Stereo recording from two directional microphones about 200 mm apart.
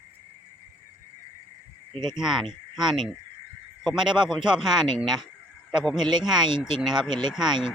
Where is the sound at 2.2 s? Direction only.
Centre (ahead or behind).